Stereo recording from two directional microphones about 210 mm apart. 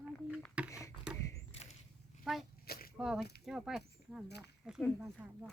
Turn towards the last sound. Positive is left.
turn(degrees=-5)  # may be behind; listen again after turning